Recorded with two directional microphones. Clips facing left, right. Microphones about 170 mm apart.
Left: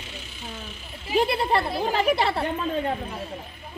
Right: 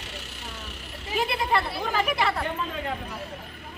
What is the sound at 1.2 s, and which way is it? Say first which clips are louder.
Speech: left 3 dB; 35° left (ahead or behind).